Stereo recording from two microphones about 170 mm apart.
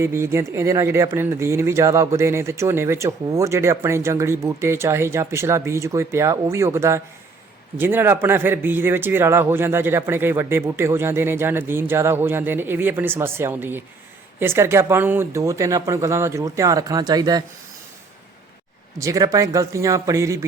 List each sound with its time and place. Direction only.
0.0 s speech: 15° right (ahead or behind)
18.9 s speech: 20° right (ahead or behind)